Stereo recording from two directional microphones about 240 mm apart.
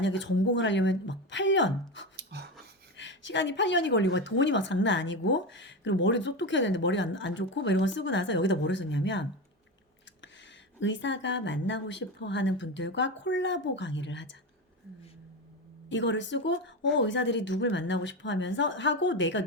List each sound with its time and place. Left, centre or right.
0.0 s a woman's voice: left
2.1 s pant: right
3.0 s a woman's voice: left
10.8 s a woman's voice: left
15.9 s a woman's voice: left